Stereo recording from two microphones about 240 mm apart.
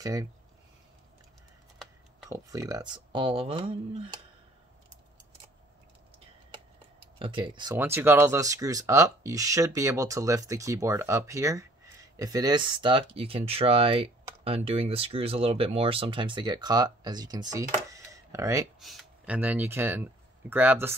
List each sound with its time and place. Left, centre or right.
0.0 s speech: centre
2.2 s speech: centre
7.2 s speech: right
18.8 s speech: centre